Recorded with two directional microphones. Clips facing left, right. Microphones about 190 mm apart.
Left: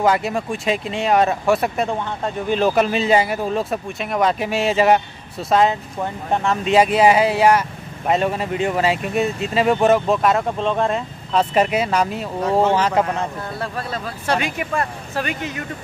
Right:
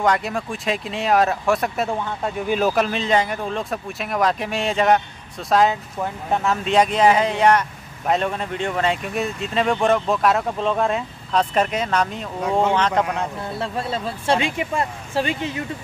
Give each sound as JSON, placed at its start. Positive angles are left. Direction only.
{"t": 0.0, "sound": "speech", "side_deg": 5}
{"t": 13.6, "sound": "speech", "side_deg": -25}